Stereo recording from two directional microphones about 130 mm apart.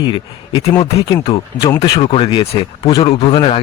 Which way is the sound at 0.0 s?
40° left (ahead or behind).